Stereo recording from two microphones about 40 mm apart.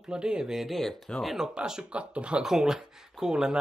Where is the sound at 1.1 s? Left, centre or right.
Left.